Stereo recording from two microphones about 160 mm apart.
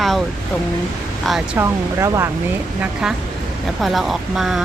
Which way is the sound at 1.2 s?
Centre (ahead or behind).